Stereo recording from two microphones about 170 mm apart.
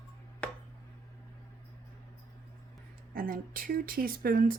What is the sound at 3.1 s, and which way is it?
Speech, 55° right (ahead or behind).